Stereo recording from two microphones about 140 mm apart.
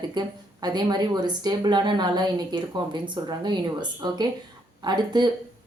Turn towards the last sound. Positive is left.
turn(degrees=-30)  # may be behind; listen again after turning